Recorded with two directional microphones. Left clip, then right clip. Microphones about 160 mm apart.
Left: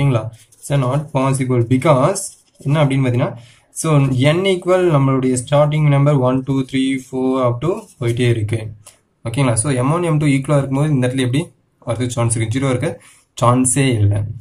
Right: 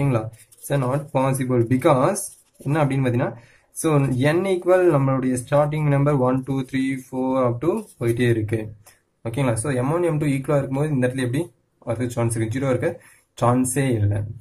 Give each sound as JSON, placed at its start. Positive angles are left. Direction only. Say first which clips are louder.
{"t": 0.0, "sound": "speech", "louder": "left 4 dB", "side_deg": -30}